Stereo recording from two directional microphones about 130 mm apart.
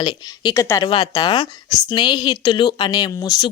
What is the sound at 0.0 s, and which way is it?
Speech, 35° left (ahead or behind).